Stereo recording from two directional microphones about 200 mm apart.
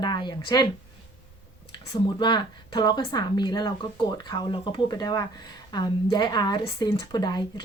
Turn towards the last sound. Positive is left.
turn(degrees=20)  # may be behind; listen again after turning